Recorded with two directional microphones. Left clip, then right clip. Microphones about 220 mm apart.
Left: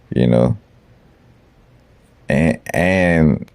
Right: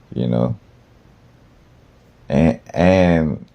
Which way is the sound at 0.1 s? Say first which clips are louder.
Left 6 dB; 50° left (ahead or behind).